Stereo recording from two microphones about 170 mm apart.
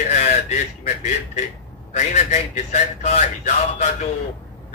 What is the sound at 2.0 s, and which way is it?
A man's voice, 45° left (ahead or behind).